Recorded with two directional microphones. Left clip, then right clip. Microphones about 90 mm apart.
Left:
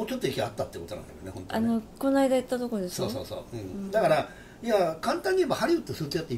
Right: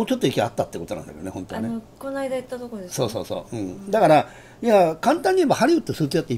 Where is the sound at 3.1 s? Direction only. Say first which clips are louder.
Right 7 dB; 45° right (ahead or behind).